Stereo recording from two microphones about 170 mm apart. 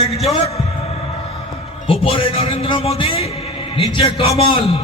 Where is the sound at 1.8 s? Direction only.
35° left (ahead or behind).